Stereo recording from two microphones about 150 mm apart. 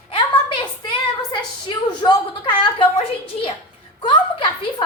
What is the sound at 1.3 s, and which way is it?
A woman's voice, 30° left (ahead or behind).